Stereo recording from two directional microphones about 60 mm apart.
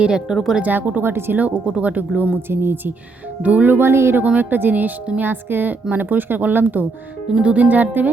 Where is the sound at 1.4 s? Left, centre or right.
Right.